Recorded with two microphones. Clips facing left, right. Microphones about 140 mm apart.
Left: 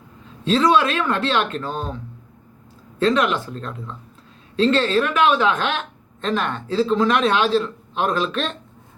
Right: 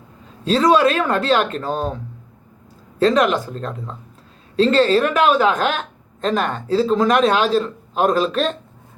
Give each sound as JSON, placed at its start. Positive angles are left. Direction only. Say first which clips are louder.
{"t": 0.4, "sound": "a man's voice", "louder": "right 3 dB", "side_deg": -40}
{"t": 3.0, "sound": "a man's voice", "louder": "right 3 dB", "side_deg": -40}